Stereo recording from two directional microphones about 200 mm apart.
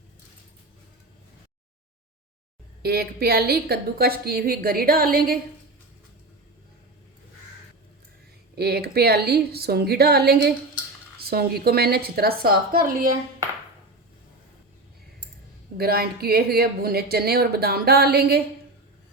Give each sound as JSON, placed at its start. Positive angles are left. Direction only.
{"t": 2.8, "sound": "speech", "side_deg": -50}
{"t": 8.5, "sound": "speech", "side_deg": -50}
{"t": 15.8, "sound": "speech", "side_deg": -50}